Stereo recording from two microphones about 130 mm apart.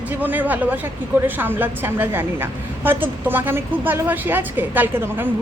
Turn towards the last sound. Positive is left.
turn(degrees=-15)  # may be behind; listen again after turning